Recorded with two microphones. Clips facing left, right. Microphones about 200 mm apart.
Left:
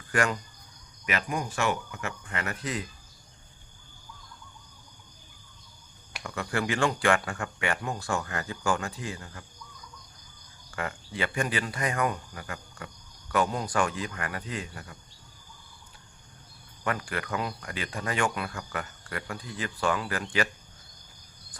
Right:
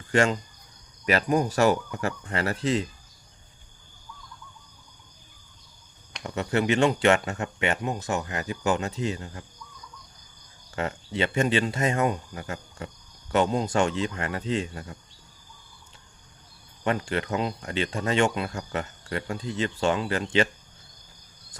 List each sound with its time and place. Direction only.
0.1 s speech: 25° right (ahead or behind)
1.0 s speech: 35° right (ahead or behind)
6.2 s speech: 25° right (ahead or behind)
10.8 s speech: 25° right (ahead or behind)
16.8 s speech: 25° right (ahead or behind)